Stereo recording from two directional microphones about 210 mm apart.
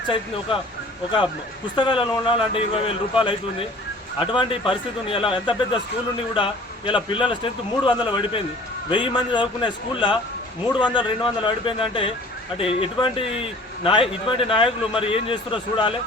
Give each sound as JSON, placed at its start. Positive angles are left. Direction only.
{"t": 1.7, "sound": "a man's voice", "side_deg": 25}